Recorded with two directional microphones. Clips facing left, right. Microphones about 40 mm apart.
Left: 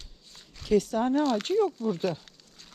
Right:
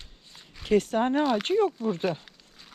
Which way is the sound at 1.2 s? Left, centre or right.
Centre.